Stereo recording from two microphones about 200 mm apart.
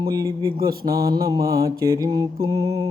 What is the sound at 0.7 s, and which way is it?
Mantra, 50° right (ahead or behind).